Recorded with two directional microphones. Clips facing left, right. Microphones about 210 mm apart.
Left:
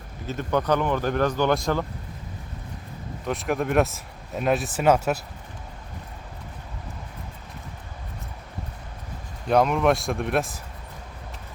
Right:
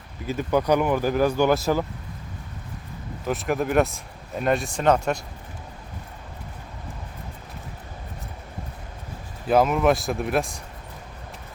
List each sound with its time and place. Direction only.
0.3 s speech: 10° right (ahead or behind)
3.2 s speech: centre (ahead or behind)
9.5 s speech: 5° right (ahead or behind)